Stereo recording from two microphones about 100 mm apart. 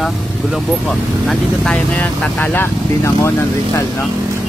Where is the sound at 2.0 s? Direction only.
15° left (ahead or behind).